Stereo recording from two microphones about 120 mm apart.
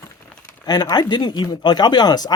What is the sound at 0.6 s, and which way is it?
Speech, 35° left (ahead or behind).